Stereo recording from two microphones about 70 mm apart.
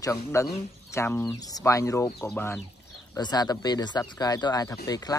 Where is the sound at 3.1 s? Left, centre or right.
Left.